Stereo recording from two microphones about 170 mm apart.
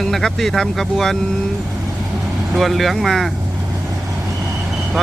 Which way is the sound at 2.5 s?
Centre (ahead or behind).